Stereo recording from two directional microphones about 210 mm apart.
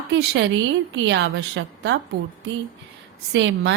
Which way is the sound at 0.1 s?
60° right (ahead or behind).